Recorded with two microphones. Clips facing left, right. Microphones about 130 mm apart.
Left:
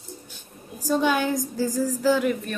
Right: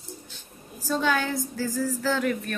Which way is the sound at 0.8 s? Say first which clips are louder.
Left 3 dB; 15° left (ahead or behind).